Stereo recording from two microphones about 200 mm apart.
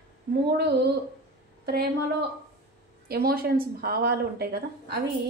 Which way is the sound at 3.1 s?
50° right (ahead or behind).